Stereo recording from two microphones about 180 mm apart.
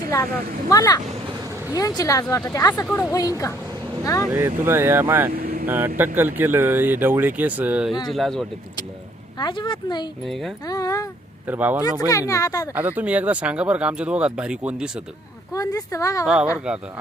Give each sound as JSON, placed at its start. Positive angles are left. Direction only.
{"t": 0.7, "sound": "a woman's voice", "side_deg": 20}
{"t": 4.3, "sound": "speech", "side_deg": -15}
{"t": 5.3, "sound": "vehicle", "side_deg": -55}
{"t": 5.6, "sound": "speech", "side_deg": -10}
{"t": 9.4, "sound": "a woman's voice", "side_deg": 25}
{"t": 10.7, "sound": "a sound", "side_deg": 20}
{"t": 11.4, "sound": "speech", "side_deg": -10}
{"t": 11.8, "sound": "a woman's voice", "side_deg": 20}
{"t": 12.7, "sound": "speech", "side_deg": -10}
{"t": 15.5, "sound": "speech", "side_deg": 20}
{"t": 16.2, "sound": "speech", "side_deg": -5}